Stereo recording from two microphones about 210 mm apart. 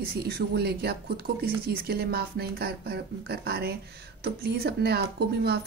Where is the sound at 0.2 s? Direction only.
50° right (ahead or behind).